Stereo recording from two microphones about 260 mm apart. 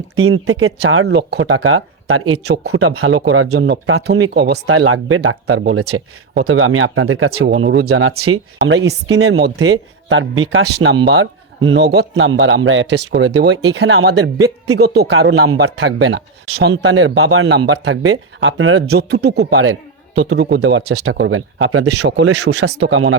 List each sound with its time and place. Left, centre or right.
0.2 s speech: right
4.4 s speech: right
4.6 s speech: right